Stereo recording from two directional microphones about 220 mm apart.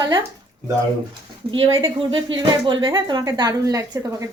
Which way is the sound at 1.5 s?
20° right (ahead or behind).